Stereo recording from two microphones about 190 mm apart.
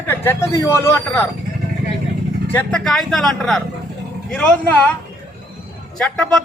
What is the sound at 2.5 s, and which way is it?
Speech, 10° left (ahead or behind).